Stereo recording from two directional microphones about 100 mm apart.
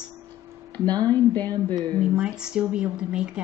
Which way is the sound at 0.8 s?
40° right (ahead or behind).